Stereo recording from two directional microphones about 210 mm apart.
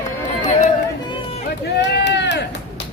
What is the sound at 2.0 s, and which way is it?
Run, 55° left (ahead or behind).